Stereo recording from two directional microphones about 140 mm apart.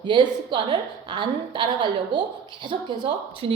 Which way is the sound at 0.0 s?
35° right (ahead or behind).